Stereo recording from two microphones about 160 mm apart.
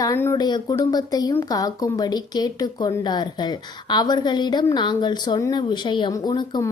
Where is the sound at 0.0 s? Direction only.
15° left (ahead or behind).